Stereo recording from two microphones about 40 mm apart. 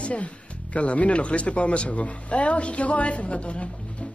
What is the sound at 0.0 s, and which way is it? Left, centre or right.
Speech, left.